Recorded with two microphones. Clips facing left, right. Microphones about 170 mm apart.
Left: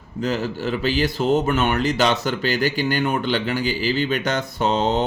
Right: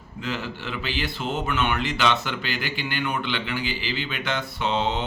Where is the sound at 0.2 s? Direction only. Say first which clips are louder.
Left 8 dB; 40° left (ahead or behind).